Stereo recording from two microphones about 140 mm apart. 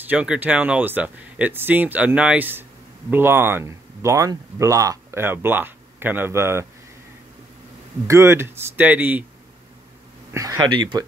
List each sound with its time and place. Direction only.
0.0 s speech: 10° right (ahead or behind)
8.1 s speech: 20° right (ahead or behind)
10.3 s speech: 20° right (ahead or behind)
10.8 s speech: 30° right (ahead or behind)